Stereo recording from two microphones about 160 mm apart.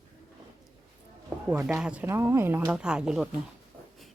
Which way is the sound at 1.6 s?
5° right (ahead or behind).